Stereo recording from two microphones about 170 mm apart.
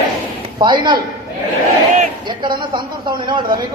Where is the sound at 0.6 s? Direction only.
25° right (ahead or behind).